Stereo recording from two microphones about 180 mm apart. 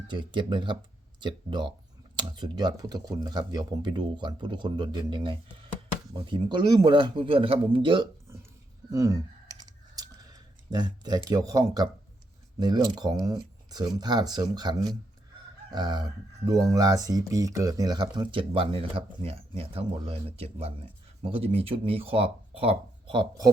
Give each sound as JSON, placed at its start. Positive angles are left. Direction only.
{"t": 0.1, "sound": "speech", "side_deg": -25}
{"t": 8.9, "sound": "typing", "side_deg": -20}
{"t": 11.3, "sound": "speech", "side_deg": -20}